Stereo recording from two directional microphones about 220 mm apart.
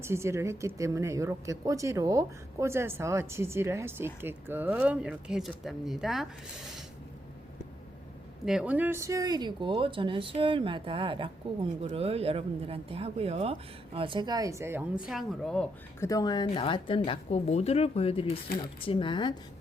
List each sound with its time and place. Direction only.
0.0 s a woman's voice: 10° right (ahead or behind)
8.4 s speech: 5° right (ahead or behind)
16.0 s speech: 15° left (ahead or behind)